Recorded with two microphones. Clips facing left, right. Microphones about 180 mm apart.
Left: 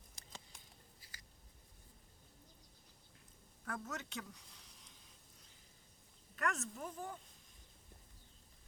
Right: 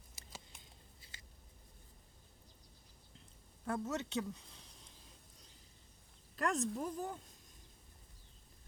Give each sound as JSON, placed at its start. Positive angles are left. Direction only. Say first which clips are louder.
{"t": 0.2, "sound": "patter", "louder": "right 2 dB", "side_deg": -5}
{"t": 1.0, "sound": "scissors", "louder": "right 2 dB", "side_deg": -25}
{"t": 3.7, "sound": "speech", "louder": "right 7 dB", "side_deg": -25}
{"t": 6.3, "sound": "speech", "louder": "right 5 dB", "side_deg": -35}